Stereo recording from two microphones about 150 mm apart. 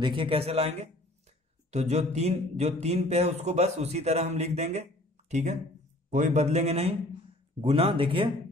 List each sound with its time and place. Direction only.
0.0 s speech: 35° right (ahead or behind)